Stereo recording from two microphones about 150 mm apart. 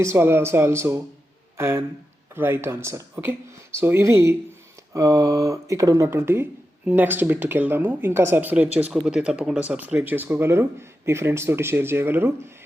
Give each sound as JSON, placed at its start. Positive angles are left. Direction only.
{"t": 0.0, "sound": "speech", "side_deg": -20}